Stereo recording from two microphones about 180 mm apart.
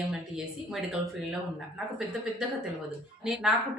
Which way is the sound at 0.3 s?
Centre (ahead or behind).